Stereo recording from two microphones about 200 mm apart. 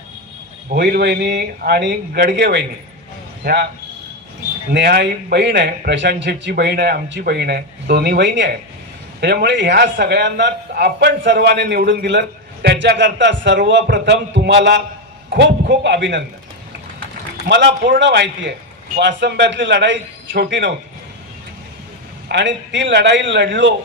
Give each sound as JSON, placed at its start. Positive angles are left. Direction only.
{"t": 0.7, "sound": "a man's voice", "side_deg": -50}
{"t": 4.7, "sound": "a man's voice", "side_deg": -55}
{"t": 17.4, "sound": "a man's voice", "side_deg": -55}
{"t": 22.3, "sound": "a man's voice", "side_deg": -65}